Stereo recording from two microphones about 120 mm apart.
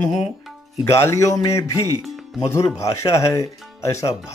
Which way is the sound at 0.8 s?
25° left (ahead or behind).